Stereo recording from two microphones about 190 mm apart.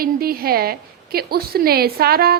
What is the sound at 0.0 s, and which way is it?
A woman's voice, 50° right (ahead or behind).